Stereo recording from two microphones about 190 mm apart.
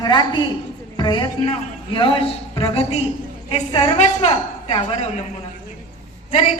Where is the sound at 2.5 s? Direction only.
30° left (ahead or behind).